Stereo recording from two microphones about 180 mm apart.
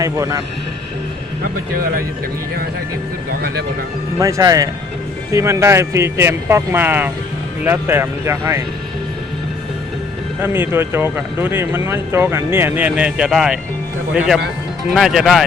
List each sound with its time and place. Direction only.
0.0 s speech: 15° right (ahead or behind)
1.7 s speech: 55° right (ahead or behind)
4.2 s speech: 15° right (ahead or behind)
10.4 s speech: 10° right (ahead or behind)
14.8 s speech: centre (ahead or behind)